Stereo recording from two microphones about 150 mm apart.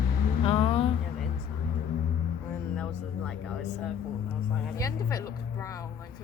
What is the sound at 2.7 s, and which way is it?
Music, 5° left (ahead or behind).